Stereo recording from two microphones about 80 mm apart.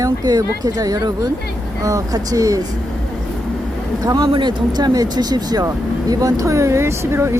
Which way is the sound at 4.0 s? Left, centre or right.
Right.